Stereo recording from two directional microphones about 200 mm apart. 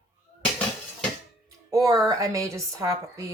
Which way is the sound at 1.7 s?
15° right (ahead or behind).